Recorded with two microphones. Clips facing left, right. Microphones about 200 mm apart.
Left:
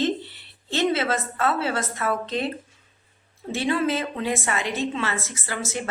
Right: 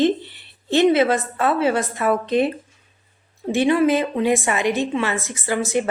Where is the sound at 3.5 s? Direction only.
15° right (ahead or behind).